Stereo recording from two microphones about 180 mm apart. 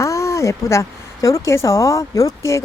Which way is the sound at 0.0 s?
15° left (ahead or behind).